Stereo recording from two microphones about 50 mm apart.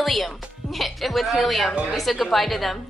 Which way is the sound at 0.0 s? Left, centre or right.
Centre.